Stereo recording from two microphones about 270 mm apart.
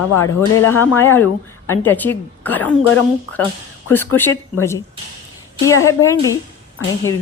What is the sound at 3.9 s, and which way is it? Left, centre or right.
Speech, centre.